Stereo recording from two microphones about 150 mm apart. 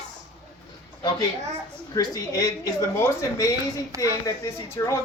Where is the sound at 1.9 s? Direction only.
25° left (ahead or behind).